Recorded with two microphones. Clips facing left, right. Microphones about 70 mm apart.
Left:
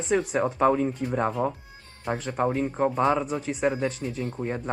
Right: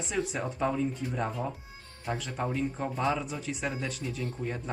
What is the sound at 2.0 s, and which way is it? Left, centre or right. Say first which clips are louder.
Speech: left 7 dB; left.